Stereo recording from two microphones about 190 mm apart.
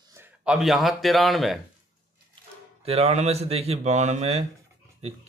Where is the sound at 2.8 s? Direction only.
30° right (ahead or behind).